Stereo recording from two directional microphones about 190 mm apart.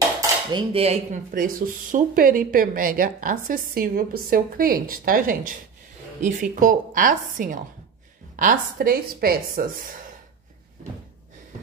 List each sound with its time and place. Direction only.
0.5 s cutlery: 25° right (ahead or behind)
1.3 s speech: 45° right (ahead or behind)